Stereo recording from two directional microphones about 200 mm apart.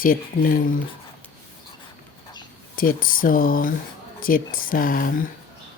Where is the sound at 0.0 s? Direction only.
45° left (ahead or behind).